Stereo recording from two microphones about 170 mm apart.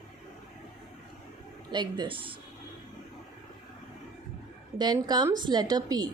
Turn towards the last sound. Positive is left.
turn(degrees=-25)  # may be behind; listen again after turning